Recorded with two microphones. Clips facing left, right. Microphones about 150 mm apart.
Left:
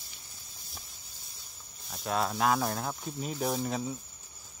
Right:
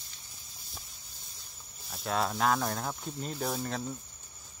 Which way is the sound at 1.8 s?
Centre (ahead or behind).